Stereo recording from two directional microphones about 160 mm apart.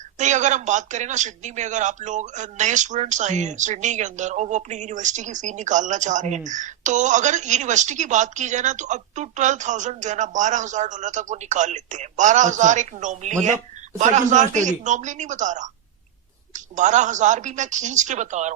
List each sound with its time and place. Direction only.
0.2 s a woman's voice: 50° right (ahead or behind)